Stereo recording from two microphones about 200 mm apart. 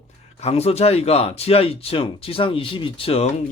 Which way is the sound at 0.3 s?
30° left (ahead or behind).